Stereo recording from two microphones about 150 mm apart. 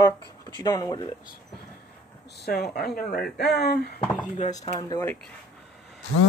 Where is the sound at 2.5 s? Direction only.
90° left.